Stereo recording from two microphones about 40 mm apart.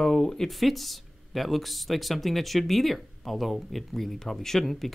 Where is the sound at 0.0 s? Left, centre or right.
Centre.